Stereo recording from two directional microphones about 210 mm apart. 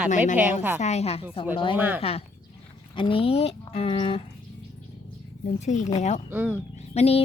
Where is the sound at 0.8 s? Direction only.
30° left (ahead or behind).